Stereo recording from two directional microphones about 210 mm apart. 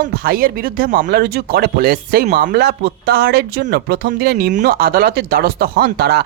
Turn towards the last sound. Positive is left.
turn(degrees=-50)  # may be behind; listen again after turning